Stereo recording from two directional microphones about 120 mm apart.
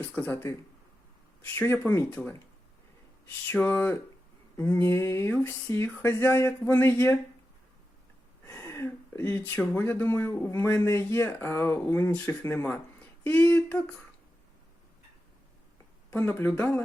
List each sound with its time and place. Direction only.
0.0 s speech: 15° left (ahead or behind)
1.5 s speech: 15° left (ahead or behind)
2.2 s speech: 5° left (ahead or behind)
3.5 s speech: 10° left (ahead or behind)
4.5 s a sound: 20° left (ahead or behind)
5.9 s speech: 15° left (ahead or behind)
8.4 s a sound: 20° left (ahead or behind)
9.7 s speech: 15° left (ahead or behind)
16.1 s speech: 20° left (ahead or behind)